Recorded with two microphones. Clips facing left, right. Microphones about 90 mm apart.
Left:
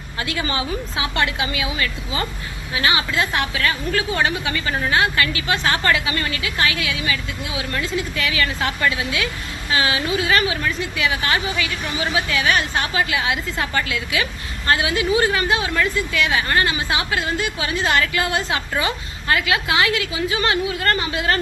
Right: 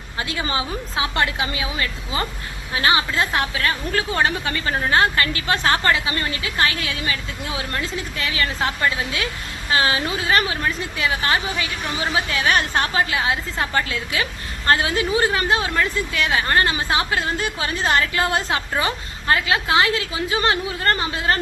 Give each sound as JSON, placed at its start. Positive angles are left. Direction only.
{"t": 0.2, "sound": "a woman's voice", "side_deg": -30}